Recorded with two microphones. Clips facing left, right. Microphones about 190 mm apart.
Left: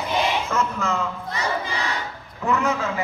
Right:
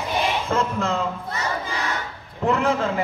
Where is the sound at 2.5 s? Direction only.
30° right (ahead or behind).